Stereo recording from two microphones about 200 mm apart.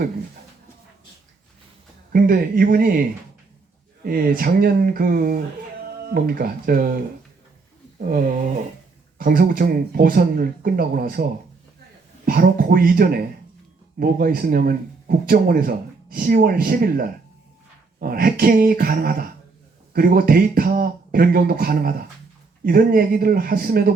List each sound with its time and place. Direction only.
2.1 s speech: 45° right (ahead or behind)
4.0 s speech: 45° right (ahead or behind)